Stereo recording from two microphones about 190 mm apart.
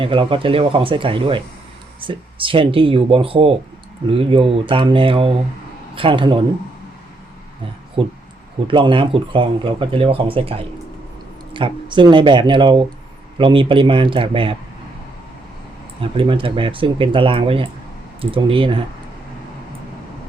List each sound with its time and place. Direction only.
0.0 s speech: 25° right (ahead or behind)
8.0 s speech: 25° right (ahead or behind)
16.0 s speech: 25° right (ahead or behind)